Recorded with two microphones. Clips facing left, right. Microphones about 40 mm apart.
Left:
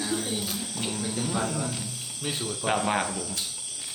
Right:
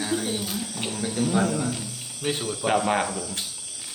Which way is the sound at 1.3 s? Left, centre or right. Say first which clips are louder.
Right 5 dB; right.